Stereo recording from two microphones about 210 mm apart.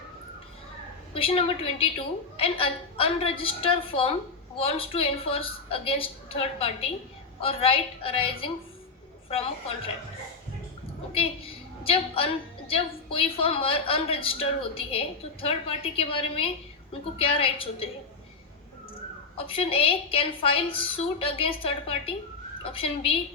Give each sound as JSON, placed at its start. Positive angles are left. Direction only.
{"t": 1.1, "sound": "a woman's voice", "side_deg": 25}
{"t": 11.1, "sound": "a woman's voice", "side_deg": 25}
{"t": 19.4, "sound": "a woman's voice", "side_deg": 25}